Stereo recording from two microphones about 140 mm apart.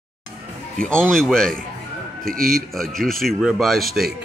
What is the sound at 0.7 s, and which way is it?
Speech, 5° left (ahead or behind).